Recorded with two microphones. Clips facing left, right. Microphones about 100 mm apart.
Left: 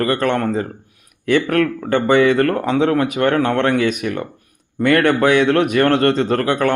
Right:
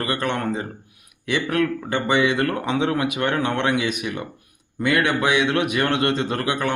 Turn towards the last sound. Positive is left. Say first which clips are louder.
# left 7 dB
turn(degrees=50)  # may be behind; listen again after turning